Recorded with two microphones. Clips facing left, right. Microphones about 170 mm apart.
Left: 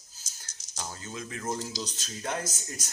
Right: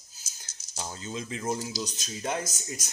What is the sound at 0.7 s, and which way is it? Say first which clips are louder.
Speech: right 3 dB; 20° right (ahead or behind).